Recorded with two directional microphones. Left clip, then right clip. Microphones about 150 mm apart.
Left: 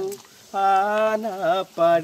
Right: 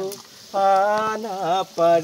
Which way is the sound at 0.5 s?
30° left (ahead or behind).